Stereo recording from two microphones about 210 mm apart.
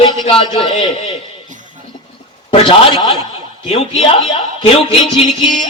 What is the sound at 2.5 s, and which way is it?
Speech, 25° left (ahead or behind).